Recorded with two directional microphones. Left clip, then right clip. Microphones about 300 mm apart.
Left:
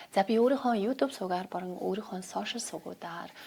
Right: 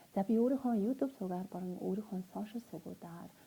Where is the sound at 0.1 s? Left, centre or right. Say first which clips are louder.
Left 8 dB; centre.